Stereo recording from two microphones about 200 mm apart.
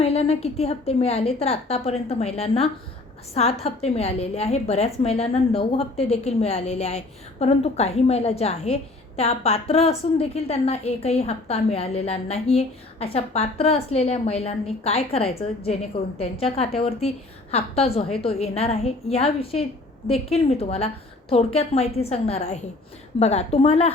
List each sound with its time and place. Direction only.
0.0 s a woman's voice: 30° left (ahead or behind)